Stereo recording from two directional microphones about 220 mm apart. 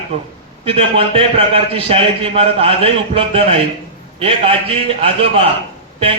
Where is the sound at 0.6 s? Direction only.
25° right (ahead or behind).